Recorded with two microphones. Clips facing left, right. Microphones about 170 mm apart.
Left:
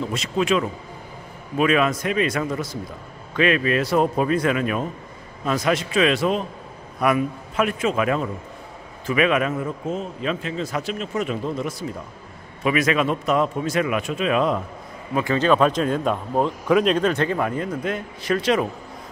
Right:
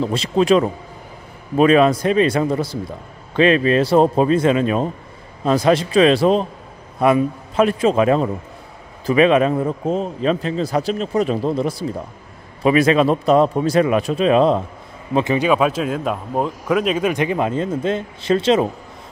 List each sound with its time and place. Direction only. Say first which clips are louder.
0.0 s a man's voice: right 6 dB; 30° right (ahead or behind)
15.3 s speech: left 1 dB; 10° right (ahead or behind); by 18.7 s 25° right (ahead or behind)